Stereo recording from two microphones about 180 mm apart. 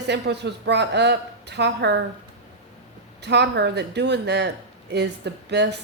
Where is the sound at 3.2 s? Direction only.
70° right (ahead or behind).